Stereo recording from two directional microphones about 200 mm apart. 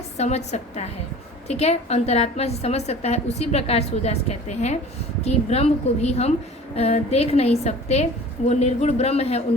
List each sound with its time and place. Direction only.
0.2 s a woman's voice: 35° left (ahead or behind)